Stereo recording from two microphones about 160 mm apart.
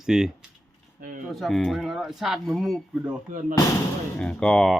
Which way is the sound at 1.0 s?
60° right (ahead or behind).